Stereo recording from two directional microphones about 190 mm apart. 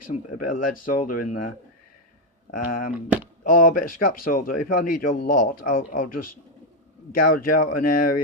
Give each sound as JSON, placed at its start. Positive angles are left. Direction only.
{"t": 0.1, "sound": "a man's voice", "side_deg": 45}
{"t": 2.6, "sound": "a man's voice", "side_deg": 50}
{"t": 7.1, "sound": "a man's voice", "side_deg": 50}